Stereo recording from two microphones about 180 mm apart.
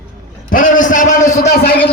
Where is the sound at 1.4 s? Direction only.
60° left (ahead or behind).